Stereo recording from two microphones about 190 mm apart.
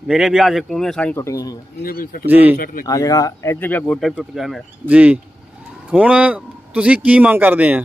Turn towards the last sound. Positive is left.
turn(degrees=-5)  # may be behind; listen again after turning